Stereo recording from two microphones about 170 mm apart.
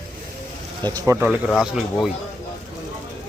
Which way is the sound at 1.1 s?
5° right (ahead or behind).